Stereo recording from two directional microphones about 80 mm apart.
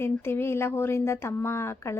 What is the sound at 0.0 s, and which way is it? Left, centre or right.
A woman's voice, left.